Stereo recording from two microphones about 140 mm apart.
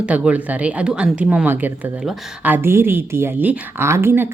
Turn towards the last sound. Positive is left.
turn(degrees=-15)  # may be behind; listen again after turning